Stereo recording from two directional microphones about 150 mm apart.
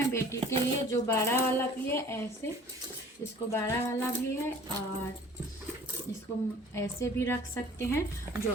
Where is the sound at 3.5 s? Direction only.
20° left (ahead or behind).